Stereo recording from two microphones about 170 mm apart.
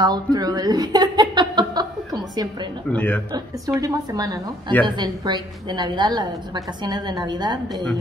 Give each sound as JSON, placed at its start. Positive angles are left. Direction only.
{"t": 0.0, "sound": "speech", "side_deg": -25}
{"t": 2.9, "sound": "speech", "side_deg": 10}
{"t": 3.3, "sound": "a woman's voice", "side_deg": -20}